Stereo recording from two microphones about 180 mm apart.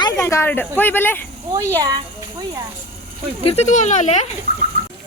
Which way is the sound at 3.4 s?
40° left (ahead or behind).